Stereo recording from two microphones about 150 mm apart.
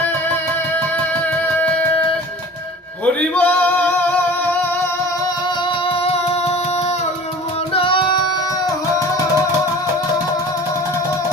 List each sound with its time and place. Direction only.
1.5 s music: 10° left (ahead or behind)
3.1 s male singing: 10° left (ahead or behind)
7.7 s music: 35° left (ahead or behind)